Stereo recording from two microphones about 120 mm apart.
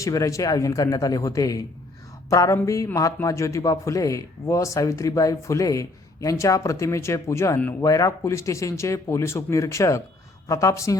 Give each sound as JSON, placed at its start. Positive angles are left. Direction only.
{"t": 0.0, "sound": "a man's voice", "side_deg": 25}